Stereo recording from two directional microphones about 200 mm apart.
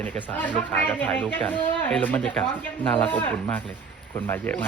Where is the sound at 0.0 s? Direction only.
5° left (ahead or behind).